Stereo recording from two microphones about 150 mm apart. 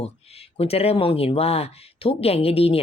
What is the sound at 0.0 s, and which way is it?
Speech, 40° left (ahead or behind).